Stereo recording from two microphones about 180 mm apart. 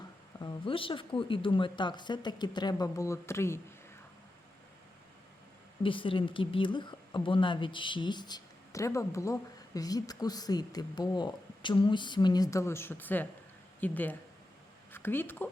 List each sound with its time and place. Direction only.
0.3 s speech: 25° left (ahead or behind)
5.8 s a woman's voice: 30° left (ahead or behind); by 15.4 s 10° left (ahead or behind)